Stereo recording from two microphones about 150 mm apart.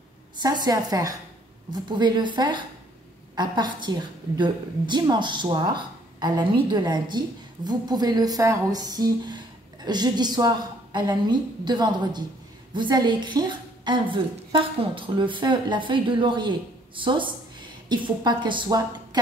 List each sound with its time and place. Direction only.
0.4 s a woman's voice: 25° right (ahead or behind)